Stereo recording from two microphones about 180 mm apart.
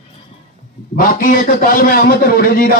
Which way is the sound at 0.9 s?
50° left (ahead or behind).